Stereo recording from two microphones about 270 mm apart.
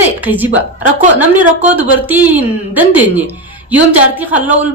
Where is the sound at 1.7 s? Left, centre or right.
Centre.